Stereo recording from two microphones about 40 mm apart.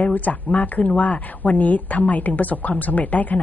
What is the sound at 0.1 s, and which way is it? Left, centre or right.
Speech, left.